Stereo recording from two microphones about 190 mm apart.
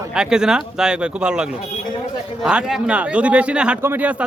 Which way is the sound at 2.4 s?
5° right (ahead or behind).